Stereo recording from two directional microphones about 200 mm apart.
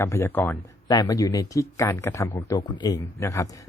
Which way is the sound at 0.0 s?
10° left (ahead or behind).